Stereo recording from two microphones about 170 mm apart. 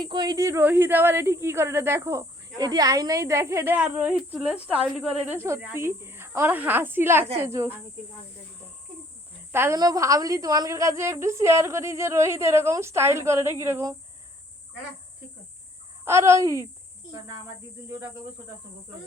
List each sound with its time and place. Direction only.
0.0 s speech: 25° right (ahead or behind)
9.5 s speech: 15° right (ahead or behind)
16.0 s speech: 15° right (ahead or behind)